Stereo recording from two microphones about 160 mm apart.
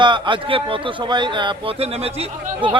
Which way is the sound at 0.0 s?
30° right (ahead or behind).